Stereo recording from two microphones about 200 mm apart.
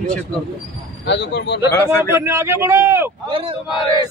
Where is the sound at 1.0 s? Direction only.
60° left (ahead or behind).